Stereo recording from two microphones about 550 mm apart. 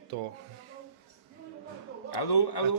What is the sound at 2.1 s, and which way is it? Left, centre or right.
Speech, left.